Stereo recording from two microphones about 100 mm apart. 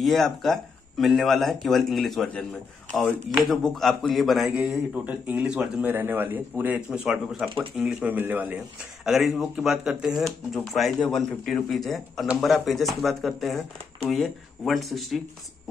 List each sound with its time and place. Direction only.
0.0 s speech: centre (ahead or behind)
5.0 s a man's voice: 10° right (ahead or behind)
9.0 s speech: centre (ahead or behind)